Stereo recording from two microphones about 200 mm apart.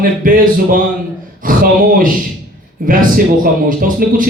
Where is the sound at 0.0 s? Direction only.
45° right (ahead or behind).